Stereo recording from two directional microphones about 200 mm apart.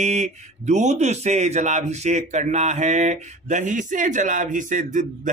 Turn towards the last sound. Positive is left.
turn(degrees=-40)  # may be behind; listen again after turning